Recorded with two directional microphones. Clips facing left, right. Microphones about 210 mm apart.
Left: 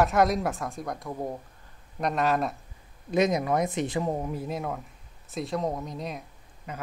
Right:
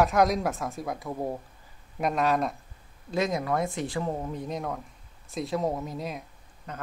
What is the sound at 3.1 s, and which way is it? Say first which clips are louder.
Speech: left 3 dB; 20° left (ahead or behind).